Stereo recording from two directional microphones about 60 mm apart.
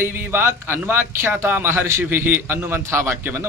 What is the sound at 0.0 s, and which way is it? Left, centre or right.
A man's voice, right.